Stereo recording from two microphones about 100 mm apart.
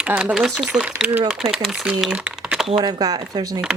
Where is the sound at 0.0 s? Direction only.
15° right (ahead or behind).